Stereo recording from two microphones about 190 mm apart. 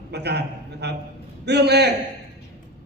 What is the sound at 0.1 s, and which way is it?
A man's voice, 60° right (ahead or behind).